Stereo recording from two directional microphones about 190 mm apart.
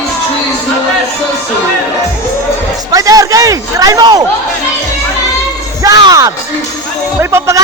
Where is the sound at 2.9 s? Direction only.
20° right (ahead or behind).